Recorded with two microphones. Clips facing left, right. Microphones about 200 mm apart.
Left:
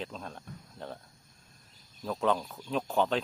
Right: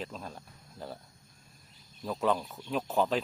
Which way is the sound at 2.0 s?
5° right (ahead or behind).